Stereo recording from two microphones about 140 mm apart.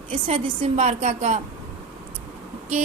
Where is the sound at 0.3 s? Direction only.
40° right (ahead or behind).